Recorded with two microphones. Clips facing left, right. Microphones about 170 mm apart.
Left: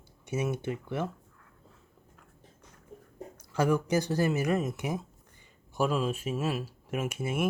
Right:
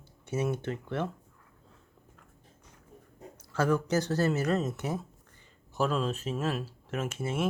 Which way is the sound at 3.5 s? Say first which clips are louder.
Left 1 dB; 15° left (ahead or behind).